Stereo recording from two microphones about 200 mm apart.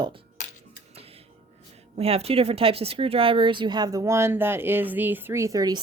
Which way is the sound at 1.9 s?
30° right (ahead or behind).